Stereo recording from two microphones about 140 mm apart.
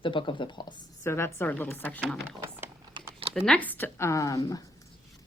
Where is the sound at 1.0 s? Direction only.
20° left (ahead or behind).